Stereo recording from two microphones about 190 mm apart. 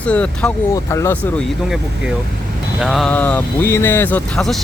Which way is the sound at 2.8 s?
Centre (ahead or behind).